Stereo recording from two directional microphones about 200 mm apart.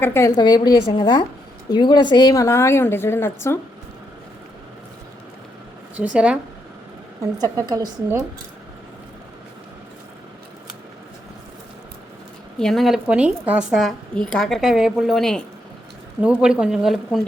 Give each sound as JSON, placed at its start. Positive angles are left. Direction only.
{"t": 0.0, "sound": "a woman's voice", "side_deg": 10}
{"t": 6.0, "sound": "a woman's voice", "side_deg": -5}
{"t": 7.3, "sound": "a woman's voice", "side_deg": -20}
{"t": 12.5, "sound": "a woman's voice", "side_deg": 0}